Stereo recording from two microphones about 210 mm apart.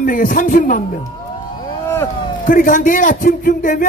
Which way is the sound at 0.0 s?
40° left (ahead or behind).